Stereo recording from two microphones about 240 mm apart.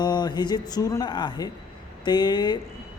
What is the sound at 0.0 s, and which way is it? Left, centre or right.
Speech, centre.